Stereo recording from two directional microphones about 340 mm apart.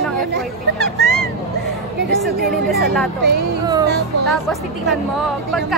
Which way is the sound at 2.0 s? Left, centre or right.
Right.